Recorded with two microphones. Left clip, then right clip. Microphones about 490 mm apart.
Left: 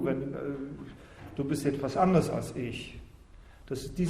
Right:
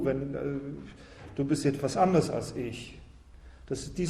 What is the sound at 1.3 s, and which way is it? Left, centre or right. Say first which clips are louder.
A man's voice: right 2 dB; centre.